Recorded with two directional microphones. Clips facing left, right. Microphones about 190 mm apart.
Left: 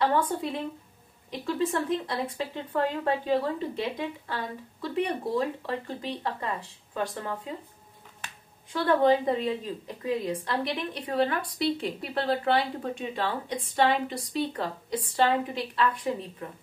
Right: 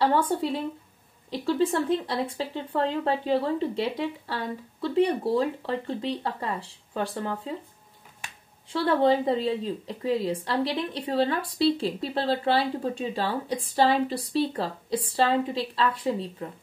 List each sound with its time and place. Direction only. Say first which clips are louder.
0.0 s speech: right 2 dB; 30° right (ahead or behind)
8.2 s finger snapping: even; 10° right (ahead or behind)
8.7 s a woman's voice: even; 30° right (ahead or behind)